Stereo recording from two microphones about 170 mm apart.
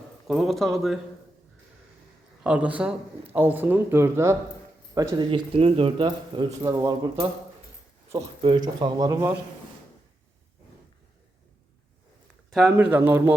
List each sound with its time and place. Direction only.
0.3 s speech: centre (ahead or behind)
2.4 s speech: 5° right (ahead or behind); by 7.3 s 25° right (ahead or behind)
8.4 s speech: 30° right (ahead or behind)
12.5 s speech: centre (ahead or behind)